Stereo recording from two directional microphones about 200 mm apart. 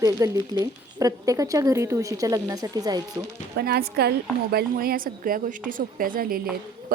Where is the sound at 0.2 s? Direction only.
15° right (ahead or behind).